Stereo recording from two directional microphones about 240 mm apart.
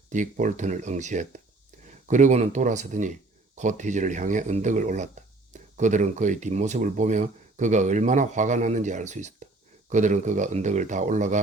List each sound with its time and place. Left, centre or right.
0.1 s speech: right